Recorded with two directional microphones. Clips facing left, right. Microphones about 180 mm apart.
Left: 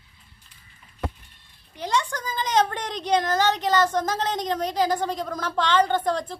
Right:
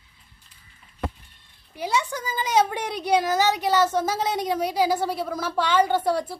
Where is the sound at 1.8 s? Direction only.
10° right (ahead or behind).